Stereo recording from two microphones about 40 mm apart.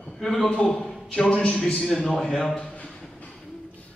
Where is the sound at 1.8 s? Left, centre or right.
Centre.